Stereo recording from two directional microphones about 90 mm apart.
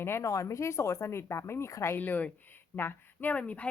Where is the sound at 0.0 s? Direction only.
30° left (ahead or behind).